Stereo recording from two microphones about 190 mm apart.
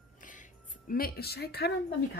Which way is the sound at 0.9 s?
55° left (ahead or behind).